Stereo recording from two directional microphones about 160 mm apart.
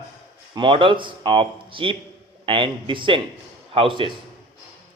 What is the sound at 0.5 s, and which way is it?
A man's voice, 30° right (ahead or behind).